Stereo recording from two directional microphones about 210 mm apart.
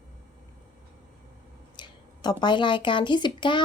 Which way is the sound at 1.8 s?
20° left (ahead or behind).